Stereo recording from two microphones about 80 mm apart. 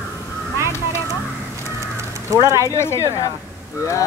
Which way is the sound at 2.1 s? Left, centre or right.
Right.